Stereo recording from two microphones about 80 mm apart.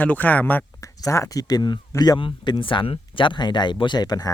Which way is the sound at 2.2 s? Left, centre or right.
Left.